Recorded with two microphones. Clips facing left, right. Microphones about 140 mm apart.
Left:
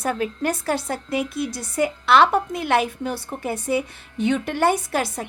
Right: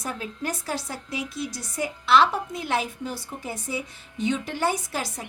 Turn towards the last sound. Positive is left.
turn(degrees=60)  # may be behind; listen again after turning